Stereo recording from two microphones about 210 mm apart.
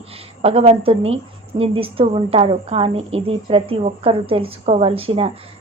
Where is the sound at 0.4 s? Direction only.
30° right (ahead or behind).